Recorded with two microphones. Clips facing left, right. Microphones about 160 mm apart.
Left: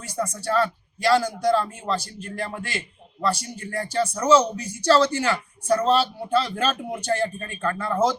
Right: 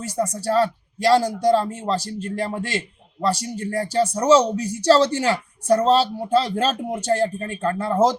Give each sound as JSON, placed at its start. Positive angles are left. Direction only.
{"t": 0.0, "sound": "speech", "side_deg": -35}